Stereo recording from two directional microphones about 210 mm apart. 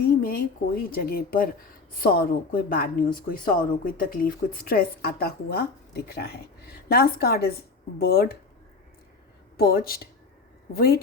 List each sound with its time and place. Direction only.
0.2 s a woman's voice: 45° left (ahead or behind)
9.6 s a woman's voice: 45° left (ahead or behind)